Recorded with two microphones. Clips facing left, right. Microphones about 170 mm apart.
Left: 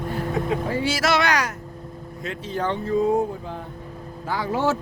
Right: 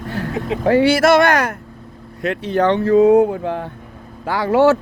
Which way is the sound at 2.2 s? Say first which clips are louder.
Right 10 dB; 70° right (ahead or behind).